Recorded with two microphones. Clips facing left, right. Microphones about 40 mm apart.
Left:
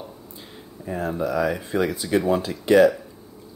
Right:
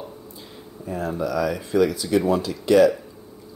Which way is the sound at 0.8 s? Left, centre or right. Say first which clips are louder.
Even; left.